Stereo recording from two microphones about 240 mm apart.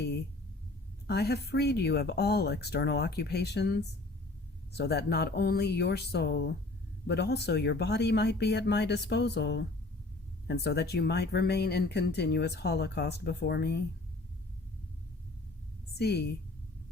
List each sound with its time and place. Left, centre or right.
1.0 s speech: left
16.0 s speech: left